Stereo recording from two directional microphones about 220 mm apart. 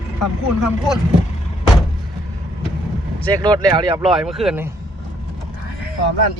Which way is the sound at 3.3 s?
20° right (ahead or behind).